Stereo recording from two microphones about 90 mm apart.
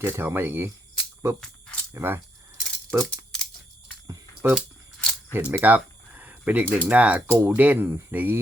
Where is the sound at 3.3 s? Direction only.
10° left (ahead or behind).